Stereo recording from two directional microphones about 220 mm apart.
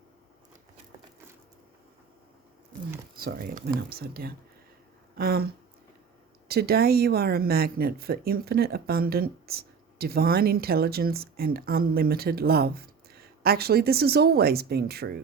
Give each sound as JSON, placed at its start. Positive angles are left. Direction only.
{"t": 3.2, "sound": "speech", "side_deg": -45}
{"t": 6.5, "sound": "speech", "side_deg": -45}